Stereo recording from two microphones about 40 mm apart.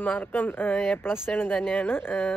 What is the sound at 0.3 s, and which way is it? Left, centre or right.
Speech, left.